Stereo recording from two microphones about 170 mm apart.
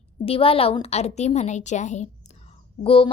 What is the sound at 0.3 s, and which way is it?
A woman's voice, 35° left (ahead or behind).